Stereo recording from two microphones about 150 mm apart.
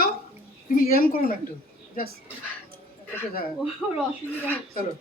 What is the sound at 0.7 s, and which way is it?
Speech, 75° left (ahead or behind).